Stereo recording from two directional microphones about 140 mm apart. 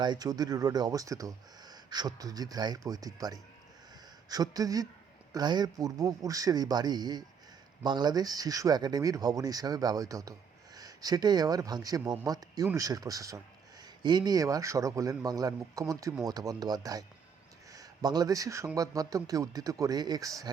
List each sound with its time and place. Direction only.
0.0 s speech: 30° right (ahead or behind)